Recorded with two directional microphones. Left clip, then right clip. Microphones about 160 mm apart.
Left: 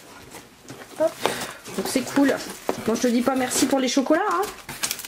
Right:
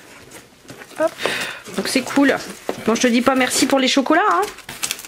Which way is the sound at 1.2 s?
Centre (ahead or behind).